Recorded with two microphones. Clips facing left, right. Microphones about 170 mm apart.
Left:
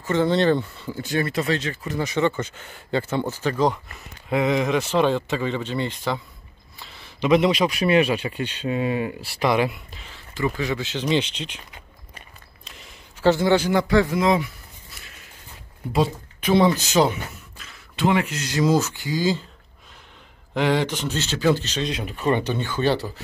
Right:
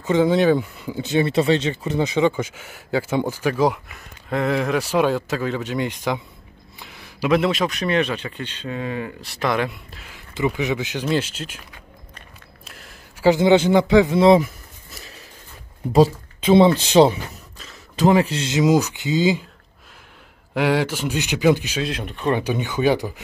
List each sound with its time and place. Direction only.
0.0 s speech: 15° right (ahead or behind)
2.1 s speech: 10° right (ahead or behind); by 9.1 s 15° left (ahead or behind)
9.2 s speech: 5° left (ahead or behind)
12.6 s a sound: 5° right (ahead or behind)
13.3 s speech: 20° right (ahead or behind)
16.3 s speech: 25° right (ahead or behind)
20.5 s speech: 10° right (ahead or behind)
22.4 s speech: 15° right (ahead or behind)